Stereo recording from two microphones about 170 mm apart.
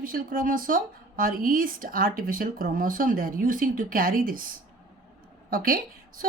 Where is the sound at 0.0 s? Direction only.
55° right (ahead or behind).